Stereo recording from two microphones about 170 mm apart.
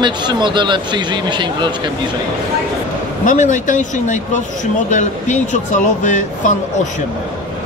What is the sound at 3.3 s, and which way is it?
Speech, 50° left (ahead or behind).